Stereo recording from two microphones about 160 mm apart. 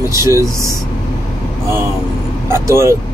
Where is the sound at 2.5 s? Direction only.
15° right (ahead or behind).